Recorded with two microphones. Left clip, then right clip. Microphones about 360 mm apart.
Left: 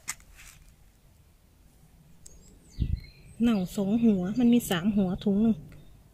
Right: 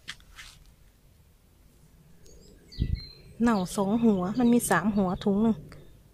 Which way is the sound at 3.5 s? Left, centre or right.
Right.